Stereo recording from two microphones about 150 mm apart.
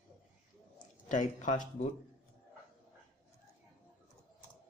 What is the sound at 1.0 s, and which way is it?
Speech, 55° left (ahead or behind).